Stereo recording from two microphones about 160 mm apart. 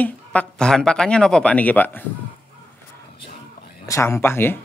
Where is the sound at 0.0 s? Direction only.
10° left (ahead or behind).